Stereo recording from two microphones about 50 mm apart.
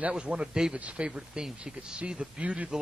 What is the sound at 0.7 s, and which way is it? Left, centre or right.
A man's voice, right.